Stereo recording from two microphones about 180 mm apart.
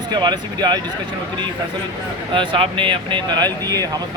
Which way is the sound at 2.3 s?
30° right (ahead or behind).